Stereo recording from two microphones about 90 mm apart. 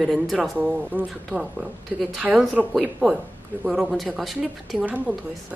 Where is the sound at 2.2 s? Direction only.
5° right (ahead or behind).